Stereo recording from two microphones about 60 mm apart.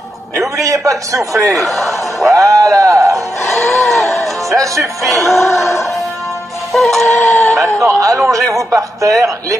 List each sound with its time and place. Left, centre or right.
0.4 s a man's voice: right
1.6 s speech: centre
2.3 s speech: right
3.8 s music: centre
4.2 s music: right
5.0 s speech: centre
6.7 s speech: centre
7.2 s chicken: left
7.5 s a man's voice: right